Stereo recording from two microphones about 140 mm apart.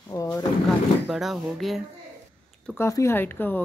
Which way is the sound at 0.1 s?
20° left (ahead or behind).